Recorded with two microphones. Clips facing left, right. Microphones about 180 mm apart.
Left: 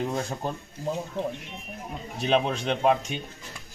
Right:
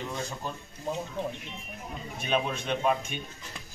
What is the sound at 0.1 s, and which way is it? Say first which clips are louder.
Speech: left 5 dB; 35° left (ahead or behind).